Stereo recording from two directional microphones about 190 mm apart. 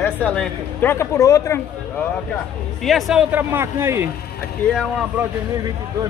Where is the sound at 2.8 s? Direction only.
Centre (ahead or behind).